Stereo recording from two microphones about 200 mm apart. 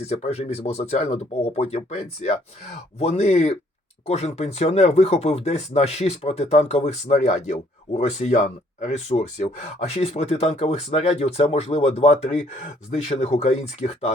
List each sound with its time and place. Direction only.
0.1 s speech: 30° left (ahead or behind)